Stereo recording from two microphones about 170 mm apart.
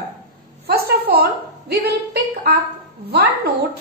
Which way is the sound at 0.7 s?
65° right (ahead or behind).